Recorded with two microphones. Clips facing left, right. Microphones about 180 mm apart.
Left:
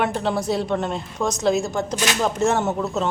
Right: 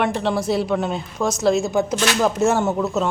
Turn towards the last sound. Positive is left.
turn(degrees=0)  # may be behind; listen again after turning